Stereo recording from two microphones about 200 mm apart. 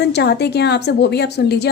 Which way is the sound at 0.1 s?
55° left (ahead or behind).